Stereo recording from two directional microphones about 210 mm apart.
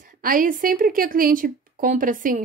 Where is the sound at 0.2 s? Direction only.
40° right (ahead or behind).